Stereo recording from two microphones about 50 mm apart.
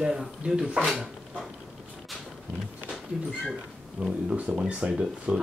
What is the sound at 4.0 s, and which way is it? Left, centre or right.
Speech, right.